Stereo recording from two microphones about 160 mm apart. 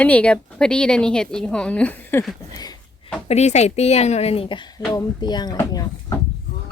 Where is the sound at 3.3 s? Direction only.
45° left (ahead or behind); by 5.8 s 25° left (ahead or behind).